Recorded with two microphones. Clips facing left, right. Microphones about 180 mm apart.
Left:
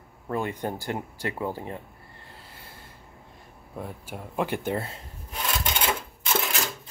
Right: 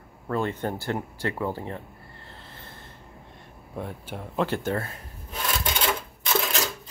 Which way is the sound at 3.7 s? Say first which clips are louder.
Right 2 dB; 5° left (ahead or behind).